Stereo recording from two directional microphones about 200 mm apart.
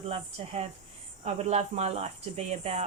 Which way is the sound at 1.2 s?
35° right (ahead or behind).